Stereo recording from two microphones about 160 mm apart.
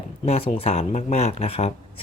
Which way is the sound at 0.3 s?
40° left (ahead or behind).